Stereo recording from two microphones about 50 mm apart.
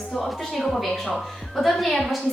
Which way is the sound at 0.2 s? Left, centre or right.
Centre.